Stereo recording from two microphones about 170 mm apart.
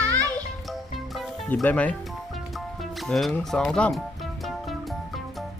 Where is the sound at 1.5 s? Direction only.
10° left (ahead or behind).